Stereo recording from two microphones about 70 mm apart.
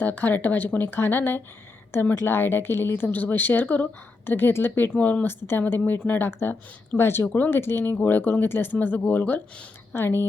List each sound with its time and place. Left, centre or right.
0.0 s speech: left